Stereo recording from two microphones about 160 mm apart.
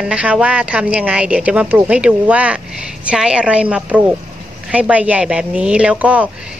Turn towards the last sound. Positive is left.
turn(degrees=-10)  # may be behind; listen again after turning